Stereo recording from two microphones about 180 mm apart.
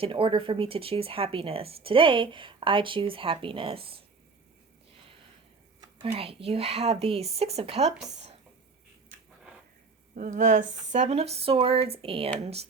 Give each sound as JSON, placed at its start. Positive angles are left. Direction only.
{"t": 0.0, "sound": "speech", "side_deg": -30}
{"t": 6.0, "sound": "speech", "side_deg": -30}
{"t": 10.2, "sound": "a woman's voice", "side_deg": -45}